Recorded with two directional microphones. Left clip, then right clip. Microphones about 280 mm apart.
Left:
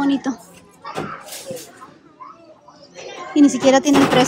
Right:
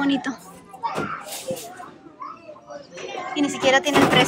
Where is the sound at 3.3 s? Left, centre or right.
Left.